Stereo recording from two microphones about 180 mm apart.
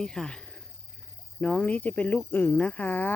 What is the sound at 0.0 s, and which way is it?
Speech, 5° left (ahead or behind).